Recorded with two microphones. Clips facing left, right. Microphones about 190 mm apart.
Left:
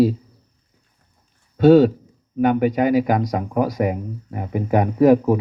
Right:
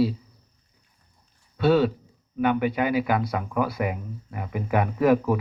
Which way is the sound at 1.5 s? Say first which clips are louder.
Left 8 dB; 45° left (ahead or behind).